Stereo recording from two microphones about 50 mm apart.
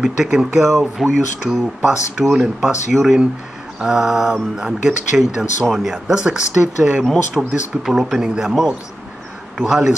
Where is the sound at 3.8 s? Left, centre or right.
Centre.